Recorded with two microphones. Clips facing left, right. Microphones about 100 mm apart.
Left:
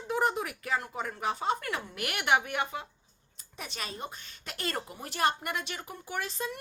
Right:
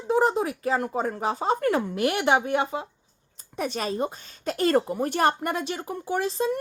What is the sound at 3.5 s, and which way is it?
Speech, 45° right (ahead or behind).